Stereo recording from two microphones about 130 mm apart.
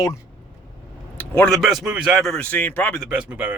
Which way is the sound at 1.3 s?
5° left (ahead or behind).